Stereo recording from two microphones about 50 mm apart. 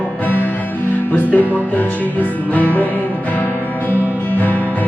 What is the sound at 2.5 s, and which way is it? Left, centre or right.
Music, left.